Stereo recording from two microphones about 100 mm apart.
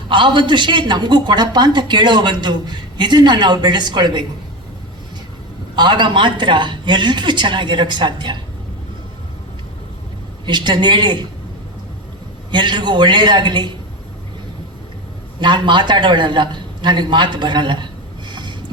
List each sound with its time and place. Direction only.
0.1 s a woman's voice: 55° right (ahead or behind)
5.7 s a woman's voice: 50° right (ahead or behind)
10.4 s a woman's voice: 50° right (ahead or behind)
12.5 s a woman's voice: 50° right (ahead or behind)
15.4 s a woman's voice: 50° right (ahead or behind)
18.3 s a sound: 50° right (ahead or behind)